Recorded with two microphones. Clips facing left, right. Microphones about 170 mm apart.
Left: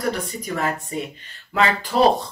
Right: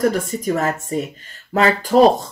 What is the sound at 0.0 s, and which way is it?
Speech, 45° right (ahead or behind).